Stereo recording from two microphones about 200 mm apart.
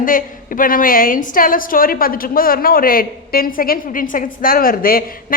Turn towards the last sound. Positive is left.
turn(degrees=45)  # may be behind; listen again after turning